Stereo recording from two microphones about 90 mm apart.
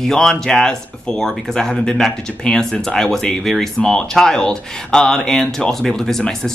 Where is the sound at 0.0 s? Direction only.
5° left (ahead or behind).